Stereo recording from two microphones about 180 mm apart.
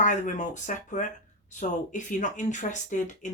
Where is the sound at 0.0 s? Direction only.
45° left (ahead or behind).